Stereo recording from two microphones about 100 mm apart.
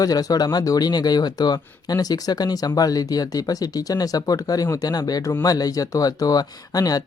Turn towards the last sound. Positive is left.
turn(degrees=40)  # may be behind; listen again after turning